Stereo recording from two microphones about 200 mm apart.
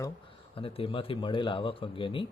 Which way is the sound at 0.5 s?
30° left (ahead or behind).